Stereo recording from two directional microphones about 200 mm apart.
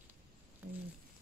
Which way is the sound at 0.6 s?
10° right (ahead or behind).